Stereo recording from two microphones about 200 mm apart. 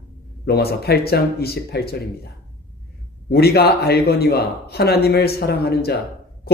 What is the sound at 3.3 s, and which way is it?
Speech, 55° left (ahead or behind).